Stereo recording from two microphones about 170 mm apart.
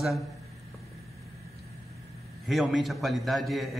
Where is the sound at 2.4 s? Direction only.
Centre (ahead or behind).